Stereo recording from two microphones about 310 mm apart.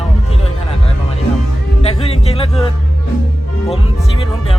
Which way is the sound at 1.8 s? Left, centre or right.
Centre.